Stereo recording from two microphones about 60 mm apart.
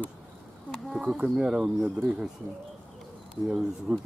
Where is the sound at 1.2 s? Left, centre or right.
Centre.